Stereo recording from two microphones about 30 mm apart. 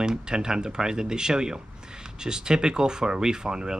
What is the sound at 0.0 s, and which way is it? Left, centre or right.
Speech, right.